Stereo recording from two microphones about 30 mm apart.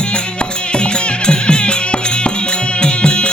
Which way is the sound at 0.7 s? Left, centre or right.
Left.